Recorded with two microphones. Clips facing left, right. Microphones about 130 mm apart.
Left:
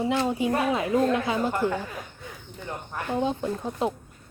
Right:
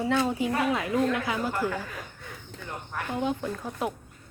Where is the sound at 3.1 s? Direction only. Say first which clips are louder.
Left 3 dB; 25° left (ahead or behind).